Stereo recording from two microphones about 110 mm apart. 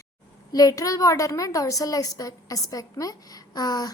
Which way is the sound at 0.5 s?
35° left (ahead or behind).